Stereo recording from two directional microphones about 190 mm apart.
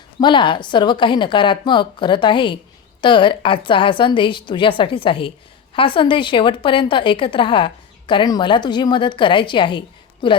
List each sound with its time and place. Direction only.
0.2 s a woman's voice: 25° left (ahead or behind)